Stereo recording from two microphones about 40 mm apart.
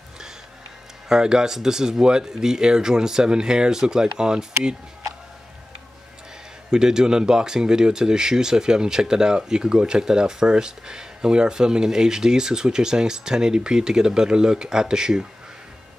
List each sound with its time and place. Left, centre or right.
1.0 s speech: centre
6.7 s speech: centre